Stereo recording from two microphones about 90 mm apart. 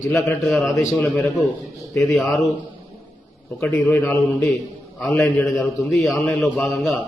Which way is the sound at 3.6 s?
5° left (ahead or behind).